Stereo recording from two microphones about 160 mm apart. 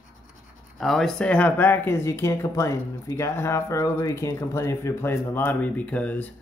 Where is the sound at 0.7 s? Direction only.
Centre (ahead or behind).